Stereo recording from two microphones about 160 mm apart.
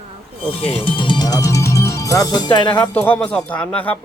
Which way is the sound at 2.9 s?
10° left (ahead or behind).